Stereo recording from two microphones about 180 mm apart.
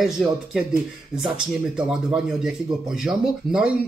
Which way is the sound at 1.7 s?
5° right (ahead or behind).